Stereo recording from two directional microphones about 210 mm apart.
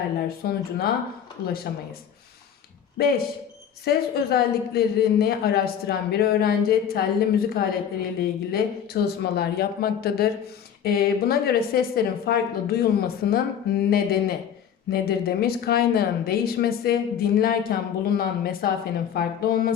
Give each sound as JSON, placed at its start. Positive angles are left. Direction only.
{"t": 0.3, "sound": "speech", "side_deg": 45}
{"t": 3.8, "sound": "speech", "side_deg": 50}